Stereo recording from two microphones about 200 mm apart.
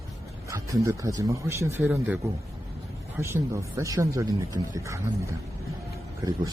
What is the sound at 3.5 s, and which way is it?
Speech, 15° right (ahead or behind).